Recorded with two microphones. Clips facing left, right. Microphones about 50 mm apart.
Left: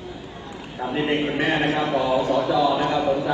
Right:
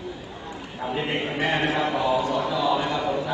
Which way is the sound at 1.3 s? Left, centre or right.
Left.